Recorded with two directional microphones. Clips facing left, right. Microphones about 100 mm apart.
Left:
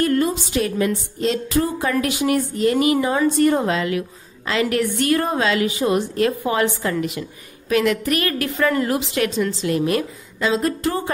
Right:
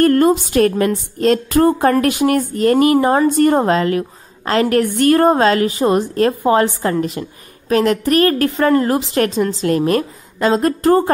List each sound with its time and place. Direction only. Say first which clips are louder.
0.0 s a woman's voice: right 7 dB; 50° right (ahead or behind)